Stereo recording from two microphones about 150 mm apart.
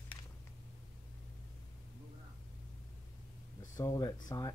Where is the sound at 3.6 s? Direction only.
25° left (ahead or behind).